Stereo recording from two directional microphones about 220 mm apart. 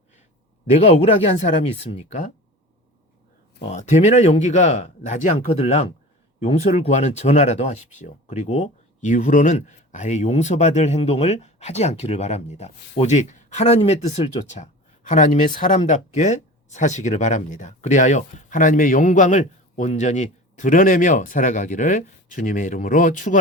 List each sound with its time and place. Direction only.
0.7 s speech: 30° left (ahead or behind)
3.6 s speech: 30° left (ahead or behind)